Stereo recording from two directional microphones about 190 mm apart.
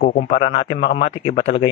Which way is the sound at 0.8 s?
55° left (ahead or behind).